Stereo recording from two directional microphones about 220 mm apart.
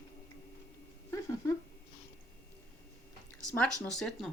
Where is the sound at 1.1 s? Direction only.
15° left (ahead or behind).